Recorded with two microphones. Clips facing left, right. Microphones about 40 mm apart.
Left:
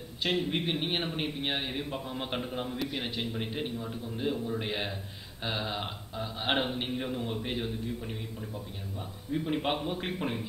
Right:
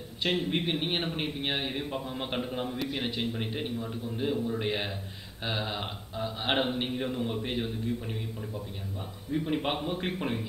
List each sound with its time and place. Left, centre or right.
0.5 s speech: centre
2.9 s a man's voice: right
3.3 s a man's voice: centre
9.3 s a man's voice: centre